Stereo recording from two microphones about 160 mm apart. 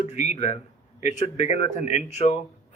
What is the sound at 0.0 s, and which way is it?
A man's voice, 45° left (ahead or behind).